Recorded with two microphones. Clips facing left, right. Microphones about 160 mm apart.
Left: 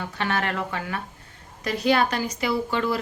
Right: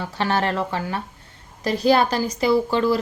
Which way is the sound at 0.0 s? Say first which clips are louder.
Right 4 dB; 30° right (ahead or behind).